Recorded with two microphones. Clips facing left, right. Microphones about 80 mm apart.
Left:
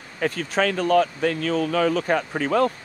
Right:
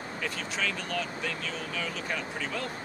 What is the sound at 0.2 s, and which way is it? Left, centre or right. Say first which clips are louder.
Speech: left 12 dB; left.